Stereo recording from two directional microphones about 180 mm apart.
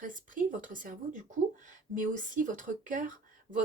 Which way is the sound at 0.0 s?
45° right (ahead or behind).